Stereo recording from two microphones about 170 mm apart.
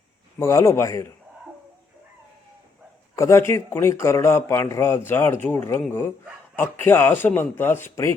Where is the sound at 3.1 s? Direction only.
15° left (ahead or behind).